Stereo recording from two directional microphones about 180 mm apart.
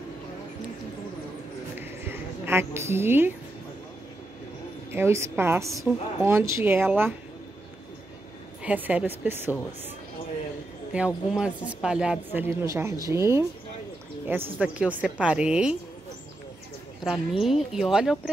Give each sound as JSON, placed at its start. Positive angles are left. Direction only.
{"t": 1.8, "sound": "a sound", "side_deg": -10}
{"t": 4.9, "sound": "speech", "side_deg": -15}
{"t": 8.6, "sound": "speech", "side_deg": -10}
{"t": 10.9, "sound": "speech", "side_deg": -10}
{"t": 17.0, "sound": "speech", "side_deg": 0}